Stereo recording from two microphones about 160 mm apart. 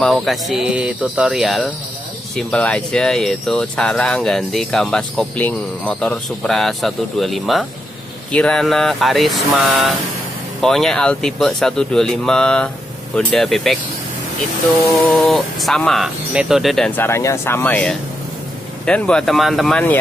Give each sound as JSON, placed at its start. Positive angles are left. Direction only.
{"t": 0.0, "sound": "speech", "side_deg": 0}
{"t": 15.2, "sound": "speech", "side_deg": 0}